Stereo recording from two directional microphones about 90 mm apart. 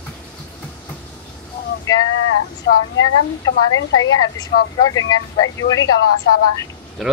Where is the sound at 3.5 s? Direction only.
50° left (ahead or behind).